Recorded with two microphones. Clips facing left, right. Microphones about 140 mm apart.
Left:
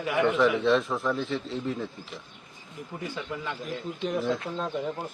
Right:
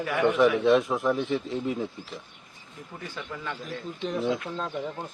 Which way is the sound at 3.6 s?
Centre (ahead or behind).